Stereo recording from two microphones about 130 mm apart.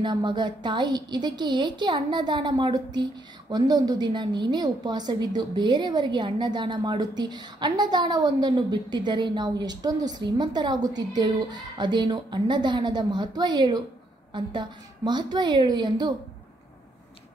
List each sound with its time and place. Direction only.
0.0 s a woman's voice: 35° right (ahead or behind)